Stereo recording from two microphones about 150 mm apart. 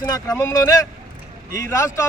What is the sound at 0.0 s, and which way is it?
Speech, 20° left (ahead or behind).